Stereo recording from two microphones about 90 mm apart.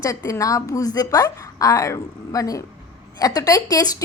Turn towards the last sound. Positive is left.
turn(degrees=45)  # may be behind; listen again after turning